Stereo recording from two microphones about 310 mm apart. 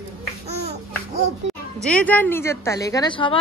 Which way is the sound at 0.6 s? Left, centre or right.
Right.